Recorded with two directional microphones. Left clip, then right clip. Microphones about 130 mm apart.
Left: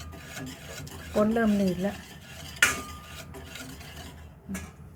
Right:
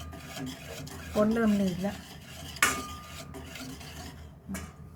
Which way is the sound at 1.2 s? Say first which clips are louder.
Left 2 dB; 25° left (ahead or behind).